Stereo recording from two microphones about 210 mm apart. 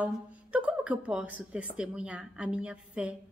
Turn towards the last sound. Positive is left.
turn(degrees=-5)  # may be behind; listen again after turning